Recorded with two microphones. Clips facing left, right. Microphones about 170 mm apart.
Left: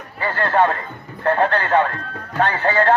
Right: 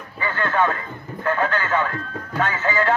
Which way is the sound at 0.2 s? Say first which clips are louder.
Left 4 dB; 35° left (ahead or behind).